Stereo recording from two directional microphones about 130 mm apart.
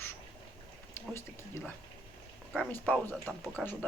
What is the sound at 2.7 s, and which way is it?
Speech, 15° left (ahead or behind).